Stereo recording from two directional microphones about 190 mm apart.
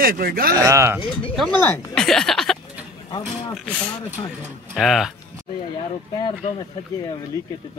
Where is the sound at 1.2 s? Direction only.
5° left (ahead or behind).